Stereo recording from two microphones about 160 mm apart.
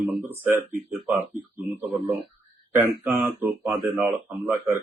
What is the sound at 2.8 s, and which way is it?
Speech, 15° right (ahead or behind).